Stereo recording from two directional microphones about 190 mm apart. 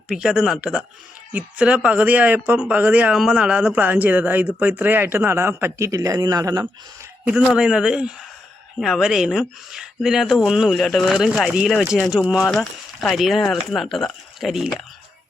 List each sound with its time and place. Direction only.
0.1 s speech: 5° right (ahead or behind)
7.3 s speech: 5° right (ahead or behind)